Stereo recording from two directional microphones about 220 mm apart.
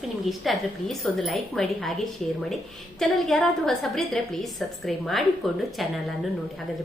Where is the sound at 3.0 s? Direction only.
Centre (ahead or behind).